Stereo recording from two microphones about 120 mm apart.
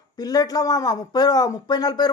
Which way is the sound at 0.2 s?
30° left (ahead or behind).